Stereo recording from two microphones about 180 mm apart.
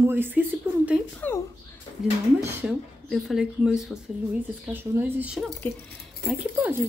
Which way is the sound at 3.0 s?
Centre (ahead or behind).